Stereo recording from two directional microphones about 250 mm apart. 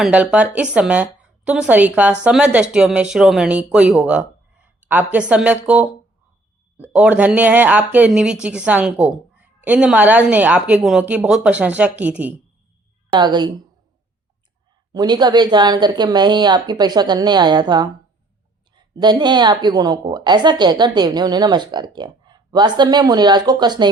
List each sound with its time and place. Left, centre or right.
0.0 s a woman's voice: centre
13.1 s a woman's voice: centre
14.9 s a woman's voice: centre